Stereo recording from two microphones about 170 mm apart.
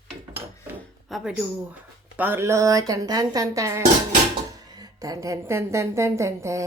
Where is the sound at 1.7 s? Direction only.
10° right (ahead or behind).